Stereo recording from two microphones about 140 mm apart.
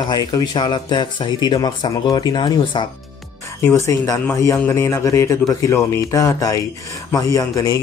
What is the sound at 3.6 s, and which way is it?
Speech, 20° left (ahead or behind).